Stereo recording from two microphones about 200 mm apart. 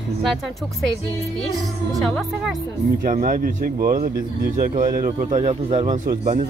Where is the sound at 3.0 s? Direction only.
45° right (ahead or behind).